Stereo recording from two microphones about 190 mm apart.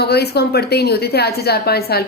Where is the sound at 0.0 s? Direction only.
60° left (ahead or behind).